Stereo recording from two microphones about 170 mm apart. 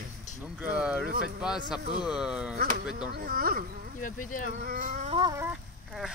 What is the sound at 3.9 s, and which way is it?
Speech, 50° left (ahead or behind).